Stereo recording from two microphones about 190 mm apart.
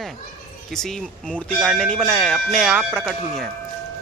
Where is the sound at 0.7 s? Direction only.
Centre (ahead or behind).